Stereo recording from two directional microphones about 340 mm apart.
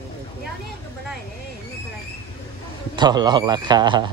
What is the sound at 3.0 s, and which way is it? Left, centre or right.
Speech, centre.